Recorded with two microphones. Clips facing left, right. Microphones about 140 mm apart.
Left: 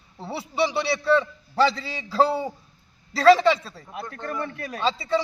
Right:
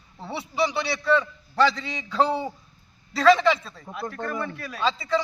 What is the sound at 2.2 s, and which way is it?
Speech, 5° left (ahead or behind).